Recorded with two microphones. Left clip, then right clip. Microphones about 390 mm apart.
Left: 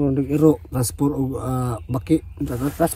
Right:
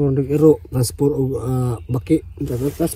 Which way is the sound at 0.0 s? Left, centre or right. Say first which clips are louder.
Right 3 dB; centre.